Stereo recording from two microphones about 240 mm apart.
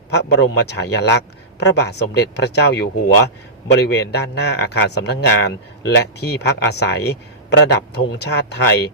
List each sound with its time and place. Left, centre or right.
0.1 s a man's voice: left